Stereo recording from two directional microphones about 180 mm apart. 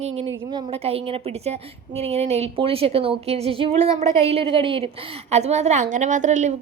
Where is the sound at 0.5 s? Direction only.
35° right (ahead or behind).